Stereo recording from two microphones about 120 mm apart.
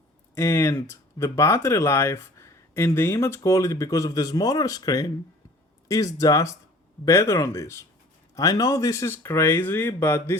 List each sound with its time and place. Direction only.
0.3 s speech: 25° left (ahead or behind)